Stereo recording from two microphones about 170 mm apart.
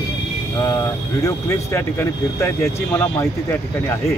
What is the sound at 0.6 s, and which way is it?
Speech, 20° left (ahead or behind).